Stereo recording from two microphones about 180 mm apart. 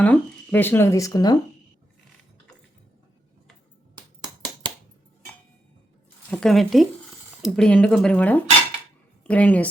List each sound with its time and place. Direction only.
0.0 s speech: 10° left (ahead or behind)
3.9 s finger snapping: 25° right (ahead or behind)
6.3 s speech: 5° left (ahead or behind)